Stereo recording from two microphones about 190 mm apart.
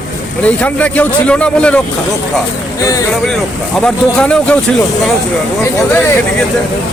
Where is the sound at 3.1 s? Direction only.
Centre (ahead or behind).